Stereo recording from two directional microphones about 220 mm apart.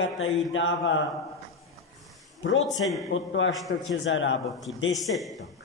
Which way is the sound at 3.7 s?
50° left (ahead or behind).